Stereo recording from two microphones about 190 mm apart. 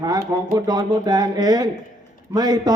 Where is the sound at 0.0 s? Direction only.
20° right (ahead or behind).